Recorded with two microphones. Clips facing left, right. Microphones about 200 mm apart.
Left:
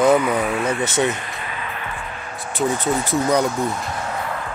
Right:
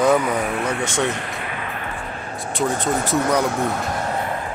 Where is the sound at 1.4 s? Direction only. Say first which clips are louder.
Right 1 dB; 55° right (ahead or behind).